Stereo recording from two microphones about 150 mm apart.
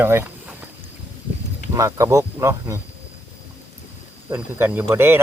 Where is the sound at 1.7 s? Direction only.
20° right (ahead or behind).